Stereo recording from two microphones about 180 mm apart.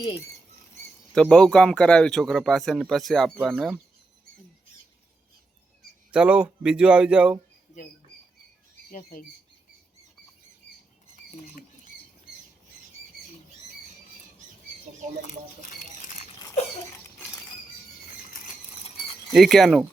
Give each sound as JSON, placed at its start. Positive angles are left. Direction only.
{"t": 1.1, "sound": "speech", "side_deg": 5}
{"t": 6.1, "sound": "speech", "side_deg": -5}
{"t": 8.9, "sound": "speech", "side_deg": 45}
{"t": 15.3, "sound": "a sound", "side_deg": 45}
{"t": 18.8, "sound": "a sound", "side_deg": 30}
{"t": 19.3, "sound": "speech", "side_deg": 0}